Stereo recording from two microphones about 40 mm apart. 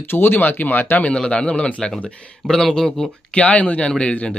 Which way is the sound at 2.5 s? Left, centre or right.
Centre.